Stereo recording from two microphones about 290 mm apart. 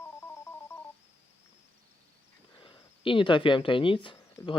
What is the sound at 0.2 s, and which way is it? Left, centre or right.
Music, centre.